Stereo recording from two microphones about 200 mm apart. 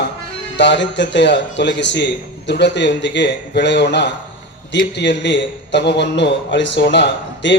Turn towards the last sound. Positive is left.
turn(degrees=65)  # may be behind; listen again after turning